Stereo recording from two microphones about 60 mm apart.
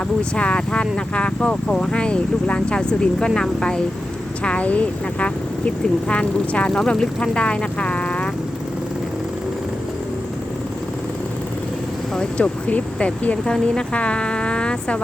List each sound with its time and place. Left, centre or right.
0.2 s speech: centre
4.4 s speech: left
12.1 s speech: centre